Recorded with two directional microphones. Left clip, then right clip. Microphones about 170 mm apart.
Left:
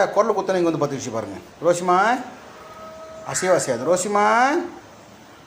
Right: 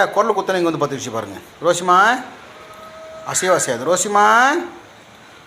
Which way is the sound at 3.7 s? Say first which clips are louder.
Right 2 dB; 5° left (ahead or behind).